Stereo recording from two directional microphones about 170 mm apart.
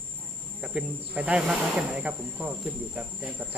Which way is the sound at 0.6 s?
5° right (ahead or behind).